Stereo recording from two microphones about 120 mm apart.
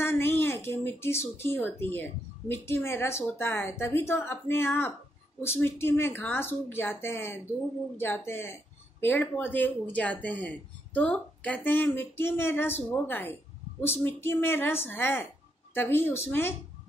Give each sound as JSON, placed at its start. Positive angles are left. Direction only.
{"t": 0.0, "sound": "a child's voice", "side_deg": 20}